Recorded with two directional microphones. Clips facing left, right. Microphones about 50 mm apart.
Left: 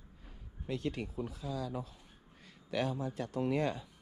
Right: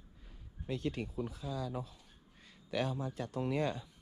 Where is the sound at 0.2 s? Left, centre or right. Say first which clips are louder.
Left 1 dB; left.